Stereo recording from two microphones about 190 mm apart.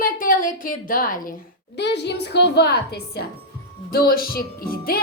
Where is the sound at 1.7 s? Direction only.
60° left (ahead or behind).